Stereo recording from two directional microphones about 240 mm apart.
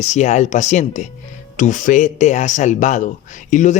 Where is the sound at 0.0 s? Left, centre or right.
Left.